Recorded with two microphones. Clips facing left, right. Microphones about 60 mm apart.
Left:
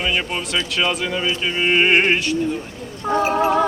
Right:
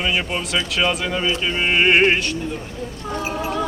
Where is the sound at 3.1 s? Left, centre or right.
Left.